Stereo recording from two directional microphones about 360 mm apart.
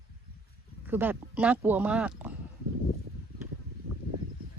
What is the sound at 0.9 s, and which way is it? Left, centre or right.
Speech, centre.